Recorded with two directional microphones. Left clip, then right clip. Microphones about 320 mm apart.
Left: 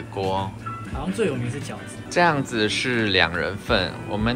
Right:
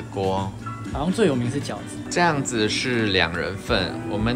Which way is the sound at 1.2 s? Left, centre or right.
Right.